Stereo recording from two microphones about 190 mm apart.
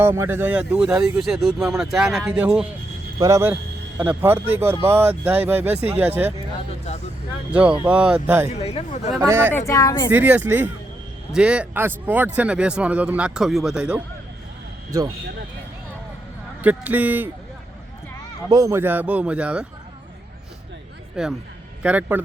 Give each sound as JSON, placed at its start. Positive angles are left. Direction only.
{"t": 0.0, "sound": "speech", "side_deg": -15}
{"t": 3.2, "sound": "a man's voice", "side_deg": -15}
{"t": 6.6, "sound": "vehicle", "side_deg": 35}
{"t": 7.9, "sound": "a man's voice", "side_deg": -5}
{"t": 8.5, "sound": "speech", "side_deg": 35}
{"t": 9.2, "sound": "a man's voice", "side_deg": -15}
{"t": 9.5, "sound": "speech", "side_deg": 15}
{"t": 10.1, "sound": "a man's voice", "side_deg": -10}
{"t": 14.9, "sound": "speech", "side_deg": -20}
{"t": 16.6, "sound": "a man's voice", "side_deg": -10}
{"t": 18.4, "sound": "a man's voice", "side_deg": -20}
{"t": 21.2, "sound": "a man's voice", "side_deg": 0}